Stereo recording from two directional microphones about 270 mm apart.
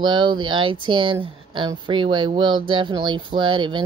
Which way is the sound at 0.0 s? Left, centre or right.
Centre.